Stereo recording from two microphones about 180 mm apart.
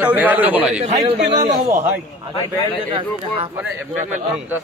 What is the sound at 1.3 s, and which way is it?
Speech, 25° right (ahead or behind).